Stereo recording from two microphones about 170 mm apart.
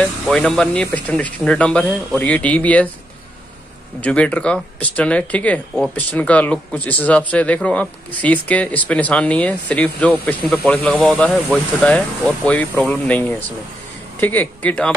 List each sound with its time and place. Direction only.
0.0 s speech: 5° left (ahead or behind)
4.0 s speech: 5° left (ahead or behind)